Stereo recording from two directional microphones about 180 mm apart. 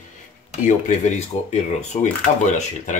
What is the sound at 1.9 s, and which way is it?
Speech, 40° left (ahead or behind).